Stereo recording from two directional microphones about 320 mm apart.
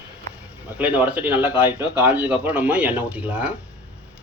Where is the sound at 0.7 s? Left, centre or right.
Centre.